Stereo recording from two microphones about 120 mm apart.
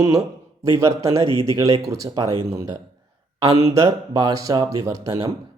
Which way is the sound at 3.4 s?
60° right (ahead or behind).